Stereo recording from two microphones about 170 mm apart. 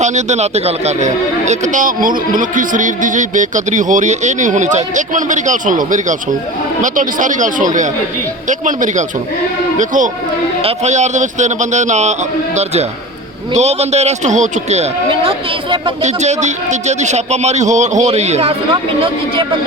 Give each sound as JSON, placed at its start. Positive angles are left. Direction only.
{"t": 0.0, "sound": "speech", "side_deg": -45}
{"t": 13.5, "sound": "a man's voice", "side_deg": -40}